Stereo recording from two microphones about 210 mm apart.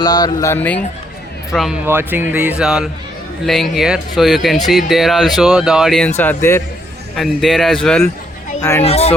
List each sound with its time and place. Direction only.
0.0 s speech: 20° left (ahead or behind)
1.5 s speech: 5° right (ahead or behind)
6.1 s speech: 10° left (ahead or behind)
7.2 s speech: centre (ahead or behind)
8.8 s speech: 30° left (ahead or behind)